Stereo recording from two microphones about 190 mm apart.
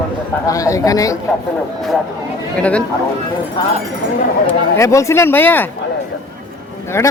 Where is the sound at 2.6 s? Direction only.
5° left (ahead or behind).